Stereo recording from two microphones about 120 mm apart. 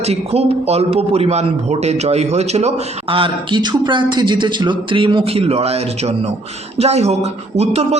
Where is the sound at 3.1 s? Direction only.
45° right (ahead or behind).